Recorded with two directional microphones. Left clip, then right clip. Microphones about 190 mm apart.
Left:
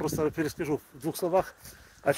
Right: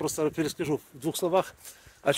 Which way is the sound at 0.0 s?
30° right (ahead or behind).